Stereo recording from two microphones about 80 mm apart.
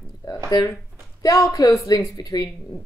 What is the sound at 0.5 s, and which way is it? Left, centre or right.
Speech, left.